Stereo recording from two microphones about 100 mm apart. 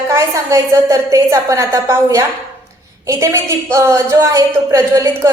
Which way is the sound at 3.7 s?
30° right (ahead or behind).